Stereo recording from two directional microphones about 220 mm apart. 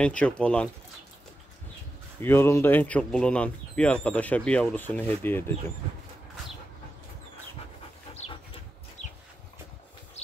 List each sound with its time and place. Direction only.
0.0 s speech: 5° left (ahead or behind)
2.2 s speech: 10° left (ahead or behind)
8.1 s a sound: 30° left (ahead or behind)